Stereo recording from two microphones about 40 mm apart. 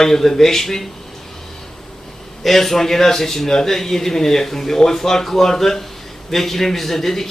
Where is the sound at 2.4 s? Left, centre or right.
Centre.